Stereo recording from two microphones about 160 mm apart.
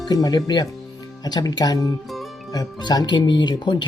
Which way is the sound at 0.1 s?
25° left (ahead or behind).